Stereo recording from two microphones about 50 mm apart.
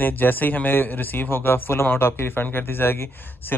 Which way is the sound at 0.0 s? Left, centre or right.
Left.